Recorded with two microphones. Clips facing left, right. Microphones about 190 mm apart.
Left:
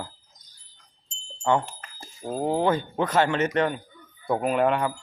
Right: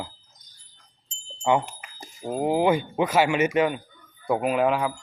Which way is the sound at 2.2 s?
10° right (ahead or behind).